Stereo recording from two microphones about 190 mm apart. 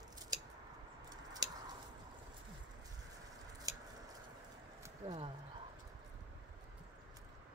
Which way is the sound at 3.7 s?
20° right (ahead or behind).